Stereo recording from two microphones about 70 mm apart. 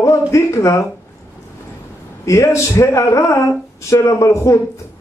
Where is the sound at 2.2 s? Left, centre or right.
Left.